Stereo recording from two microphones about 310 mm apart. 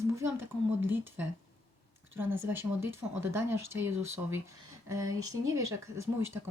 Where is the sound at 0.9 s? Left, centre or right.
Centre.